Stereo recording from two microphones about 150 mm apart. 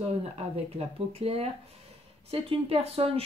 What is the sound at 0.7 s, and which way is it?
Speech, 45° right (ahead or behind).